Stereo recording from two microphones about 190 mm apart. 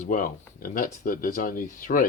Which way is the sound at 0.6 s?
45° left (ahead or behind).